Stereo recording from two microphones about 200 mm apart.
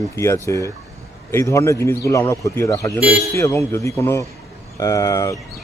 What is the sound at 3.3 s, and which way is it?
Speech, 15° left (ahead or behind).